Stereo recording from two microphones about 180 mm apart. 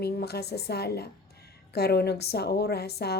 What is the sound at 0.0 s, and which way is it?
A woman's voice, 65° left (ahead or behind).